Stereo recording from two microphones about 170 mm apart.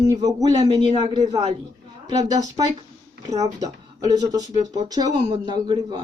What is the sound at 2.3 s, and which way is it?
Speech, 25° right (ahead or behind).